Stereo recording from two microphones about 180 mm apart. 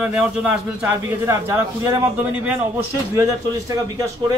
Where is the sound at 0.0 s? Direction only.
5° right (ahead or behind).